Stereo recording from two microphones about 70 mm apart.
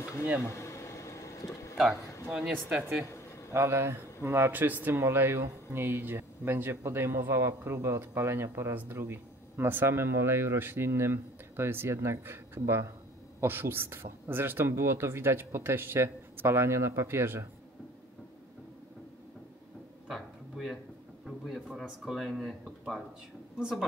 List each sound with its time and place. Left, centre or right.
0.2 s speech: centre
0.5 s vehicle: left
2.3 s speech: centre
3.5 s speech: right
4.5 s speech: right
20.1 s a sound: centre
21.6 s speech: centre